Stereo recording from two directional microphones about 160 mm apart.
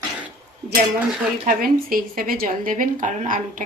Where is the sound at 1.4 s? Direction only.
60° right (ahead or behind).